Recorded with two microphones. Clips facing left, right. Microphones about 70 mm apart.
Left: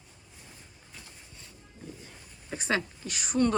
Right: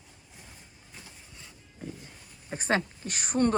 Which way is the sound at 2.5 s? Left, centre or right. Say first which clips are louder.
Right 2 dB; right.